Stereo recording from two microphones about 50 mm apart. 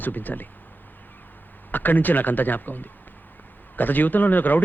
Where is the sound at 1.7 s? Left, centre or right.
Left.